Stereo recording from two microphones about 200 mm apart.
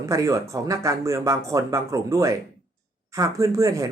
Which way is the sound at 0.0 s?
15° right (ahead or behind).